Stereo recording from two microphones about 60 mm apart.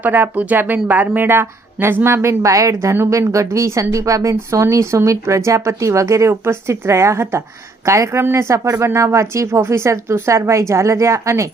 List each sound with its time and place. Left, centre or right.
0.0 s speech: right
2.5 s a woman's voice: right
3.1 s a woman's voice: right